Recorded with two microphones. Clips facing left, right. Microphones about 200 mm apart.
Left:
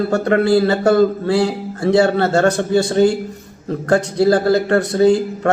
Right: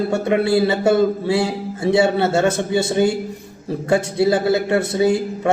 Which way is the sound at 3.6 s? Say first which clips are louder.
Left 2 dB; 5° right (ahead or behind).